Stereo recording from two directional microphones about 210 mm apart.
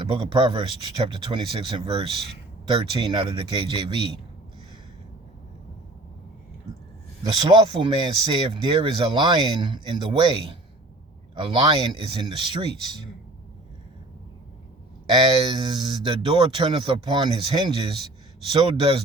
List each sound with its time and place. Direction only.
0.1 s speech: 25° right (ahead or behind)
7.5 s speech: 25° right (ahead or behind)
15.4 s speech: 20° right (ahead or behind)